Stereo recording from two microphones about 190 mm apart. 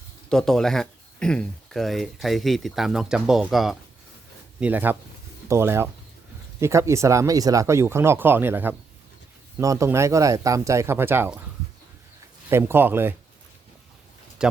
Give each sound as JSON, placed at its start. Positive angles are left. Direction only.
{"t": 0.3, "sound": "speech", "side_deg": 0}
{"t": 12.5, "sound": "speech", "side_deg": -15}